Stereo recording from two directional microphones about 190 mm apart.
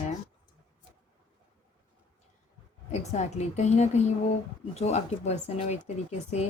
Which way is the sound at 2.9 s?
35° left (ahead or behind).